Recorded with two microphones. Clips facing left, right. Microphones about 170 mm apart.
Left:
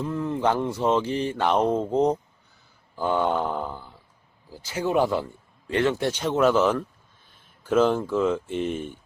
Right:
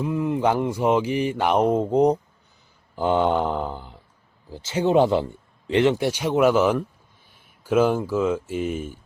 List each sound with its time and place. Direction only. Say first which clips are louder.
0.0 s speech: right 3 dB; 15° right (ahead or behind)